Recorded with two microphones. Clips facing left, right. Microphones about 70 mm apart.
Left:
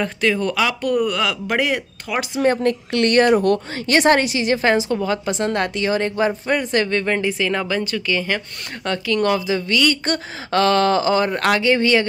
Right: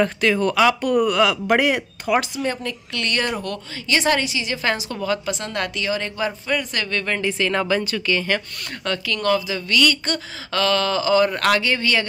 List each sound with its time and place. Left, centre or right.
0.0 s speech: centre
2.4 s a woman's voice: left
4.6 s a woman's voice: left
7.2 s speech: centre
8.8 s a woman's voice: left
10.0 s speech: left